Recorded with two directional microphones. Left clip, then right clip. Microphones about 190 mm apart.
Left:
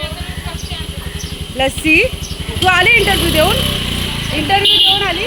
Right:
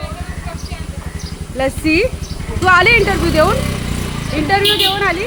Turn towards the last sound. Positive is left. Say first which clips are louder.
# left 3 dB
turn(degrees=-20)  # may be behind; listen again after turning